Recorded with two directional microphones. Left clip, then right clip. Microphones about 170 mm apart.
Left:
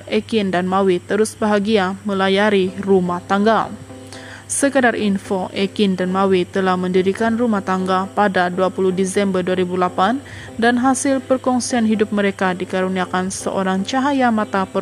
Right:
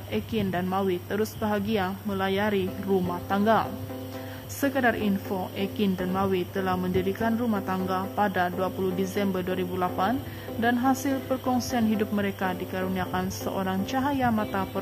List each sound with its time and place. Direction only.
0.1 s speech: 35° left (ahead or behind)